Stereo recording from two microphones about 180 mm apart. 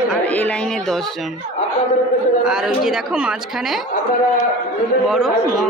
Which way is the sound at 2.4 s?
5° right (ahead or behind).